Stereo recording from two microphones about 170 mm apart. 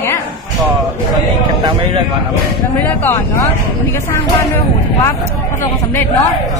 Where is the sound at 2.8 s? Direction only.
10° left (ahead or behind).